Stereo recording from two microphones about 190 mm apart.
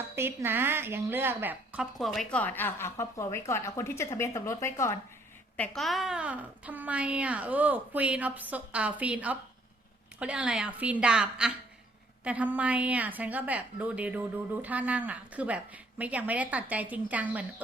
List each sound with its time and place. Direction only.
0.2 s speech: 10° right (ahead or behind); by 4.9 s 15° left (ahead or behind)
5.5 s a woman's voice: 5° left (ahead or behind)